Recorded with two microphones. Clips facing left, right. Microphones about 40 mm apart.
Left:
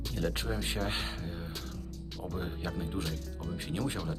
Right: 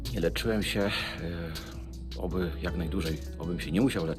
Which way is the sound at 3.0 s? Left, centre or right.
Centre.